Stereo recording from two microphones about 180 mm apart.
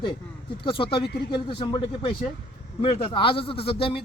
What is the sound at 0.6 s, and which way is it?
A man's voice, 30° left (ahead or behind).